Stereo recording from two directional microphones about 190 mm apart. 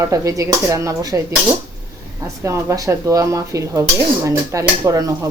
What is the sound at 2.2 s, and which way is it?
Speech, 15° right (ahead or behind).